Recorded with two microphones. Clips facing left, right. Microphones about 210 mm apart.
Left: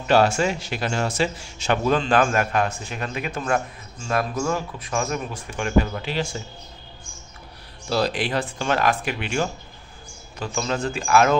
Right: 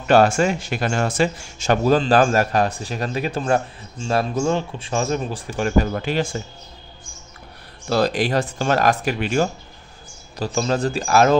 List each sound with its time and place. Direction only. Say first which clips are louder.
0.0 s speech: right 3 dB; 50° right (ahead or behind)
7.9 s speech: right 4 dB; 45° right (ahead or behind)